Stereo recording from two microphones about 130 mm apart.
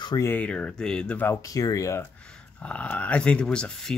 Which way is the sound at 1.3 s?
25° left (ahead or behind).